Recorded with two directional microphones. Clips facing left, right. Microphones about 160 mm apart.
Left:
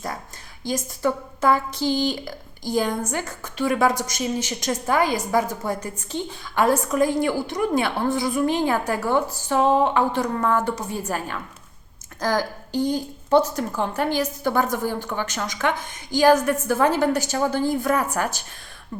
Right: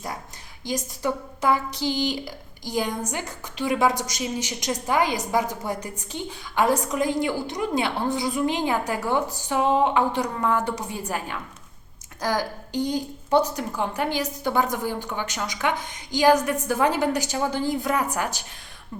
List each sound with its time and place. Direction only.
0.6 s a woman's voice: 15° right (ahead or behind)